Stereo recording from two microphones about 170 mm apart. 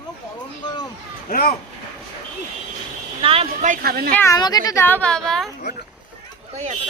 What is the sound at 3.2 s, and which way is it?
Speech, 35° right (ahead or behind).